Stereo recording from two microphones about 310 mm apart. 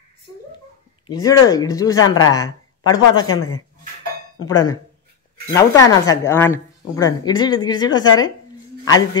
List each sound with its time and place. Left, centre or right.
1.0 s speech: centre
3.3 s speech: left
4.5 s speech: centre